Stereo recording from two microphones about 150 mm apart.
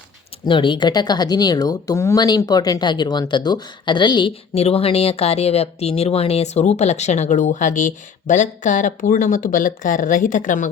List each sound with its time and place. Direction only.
0.4 s speech: 35° left (ahead or behind)
4.5 s speech: 40° left (ahead or behind); by 10.7 s 60° left (ahead or behind)